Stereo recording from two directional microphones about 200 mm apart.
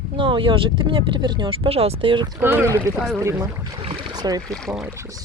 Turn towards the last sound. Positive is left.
turn(degrees=0)  # may be behind; listen again after turning